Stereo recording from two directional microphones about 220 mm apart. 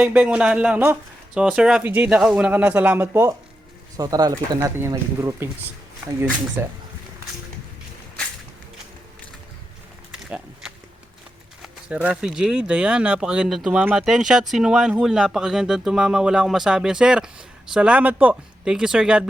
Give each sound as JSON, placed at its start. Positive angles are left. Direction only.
{"t": 0.0, "sound": "speech", "side_deg": -5}
{"t": 6.6, "sound": "speech", "side_deg": -10}
{"t": 10.2, "sound": "a sound", "side_deg": -5}
{"t": 11.6, "sound": "speech", "side_deg": -5}